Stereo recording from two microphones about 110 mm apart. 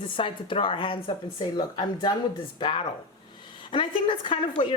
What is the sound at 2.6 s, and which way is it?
Speech, 55° left (ahead or behind).